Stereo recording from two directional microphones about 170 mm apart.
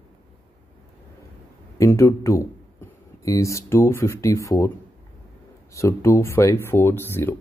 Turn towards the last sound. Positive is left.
turn(degrees=15)  # may be behind; listen again after turning